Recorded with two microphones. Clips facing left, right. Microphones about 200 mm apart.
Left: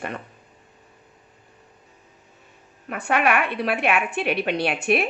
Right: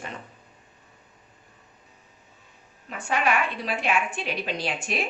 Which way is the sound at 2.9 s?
60° left (ahead or behind).